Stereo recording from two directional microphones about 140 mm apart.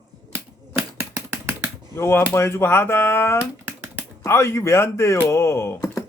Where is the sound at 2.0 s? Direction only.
20° left (ahead or behind).